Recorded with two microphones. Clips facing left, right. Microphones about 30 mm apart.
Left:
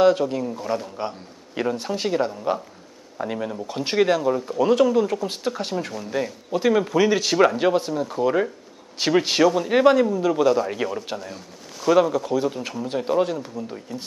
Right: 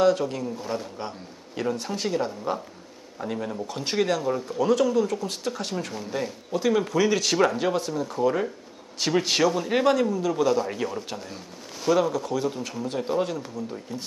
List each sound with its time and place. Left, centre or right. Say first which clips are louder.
0.2 s speech: left 4 dB; centre
9.3 s speech: left 4 dB; centre
11.1 s a sound: left 3 dB; centre
11.9 s speech: left 4 dB; centre